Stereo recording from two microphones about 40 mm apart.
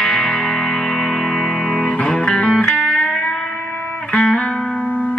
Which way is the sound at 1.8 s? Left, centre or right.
Left.